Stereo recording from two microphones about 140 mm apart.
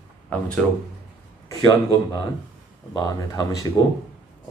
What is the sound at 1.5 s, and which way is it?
A man's voice, 25° left (ahead or behind).